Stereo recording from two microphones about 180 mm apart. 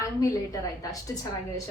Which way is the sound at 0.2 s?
20° left (ahead or behind).